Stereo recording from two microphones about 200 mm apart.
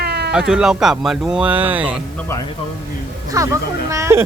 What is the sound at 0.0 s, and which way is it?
Cat, 55° right (ahead or behind).